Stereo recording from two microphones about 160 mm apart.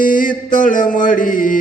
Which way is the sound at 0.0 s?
60° left (ahead or behind).